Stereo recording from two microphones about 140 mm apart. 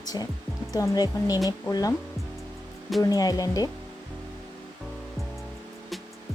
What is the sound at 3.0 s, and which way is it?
Speech, 25° left (ahead or behind).